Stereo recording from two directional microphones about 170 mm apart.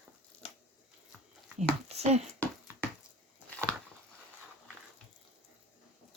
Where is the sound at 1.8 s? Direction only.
40° right (ahead or behind).